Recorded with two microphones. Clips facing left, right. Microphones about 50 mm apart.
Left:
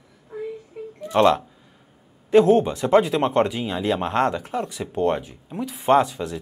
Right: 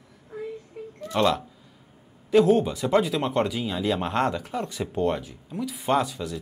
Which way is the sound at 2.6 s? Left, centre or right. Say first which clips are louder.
Left 5 dB; left.